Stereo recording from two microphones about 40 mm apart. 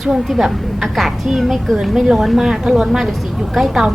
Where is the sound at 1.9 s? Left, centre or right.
Centre.